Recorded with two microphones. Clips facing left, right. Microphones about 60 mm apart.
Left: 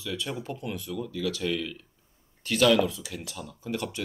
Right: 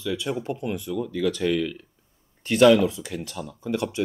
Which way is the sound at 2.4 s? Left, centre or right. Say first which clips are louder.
Right 6 dB; right.